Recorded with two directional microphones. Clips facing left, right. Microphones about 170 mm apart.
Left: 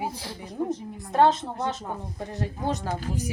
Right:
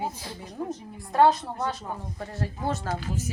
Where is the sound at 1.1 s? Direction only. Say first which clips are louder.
Even; 20° left (ahead or behind).